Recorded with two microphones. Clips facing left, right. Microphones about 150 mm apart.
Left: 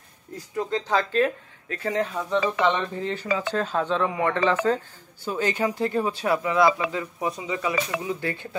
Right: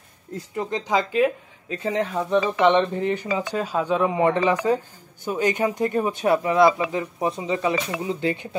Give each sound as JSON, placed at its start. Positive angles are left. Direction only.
{"t": 0.6, "sound": "speech", "side_deg": -20}